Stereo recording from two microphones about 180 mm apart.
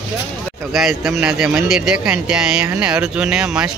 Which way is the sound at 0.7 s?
Centre (ahead or behind).